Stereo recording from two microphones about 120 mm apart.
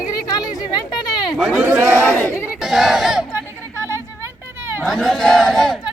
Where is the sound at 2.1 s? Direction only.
10° left (ahead or behind).